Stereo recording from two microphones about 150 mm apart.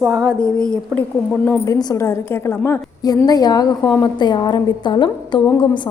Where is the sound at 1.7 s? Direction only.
25° left (ahead or behind).